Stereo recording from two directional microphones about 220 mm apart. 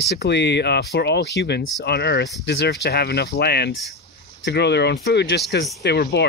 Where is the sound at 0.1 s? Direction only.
50° left (ahead or behind).